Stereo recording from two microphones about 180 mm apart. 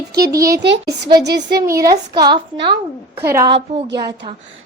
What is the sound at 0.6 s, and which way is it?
Speech, 75° right (ahead or behind).